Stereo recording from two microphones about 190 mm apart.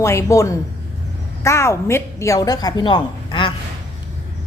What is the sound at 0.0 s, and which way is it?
A man's voice, 15° left (ahead or behind).